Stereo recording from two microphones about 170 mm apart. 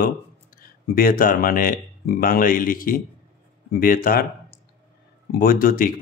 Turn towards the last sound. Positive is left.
turn(degrees=55)  # may be behind; listen again after turning